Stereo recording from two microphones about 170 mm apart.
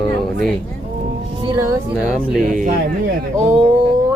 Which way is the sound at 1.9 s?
5° right (ahead or behind).